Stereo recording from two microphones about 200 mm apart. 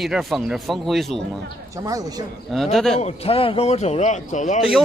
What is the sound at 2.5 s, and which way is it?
Speech, centre (ahead or behind).